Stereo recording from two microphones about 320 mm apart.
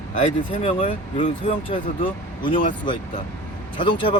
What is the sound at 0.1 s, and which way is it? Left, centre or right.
Speech, left.